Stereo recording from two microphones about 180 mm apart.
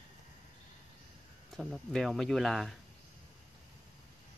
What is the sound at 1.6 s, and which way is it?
Speech, centre (ahead or behind).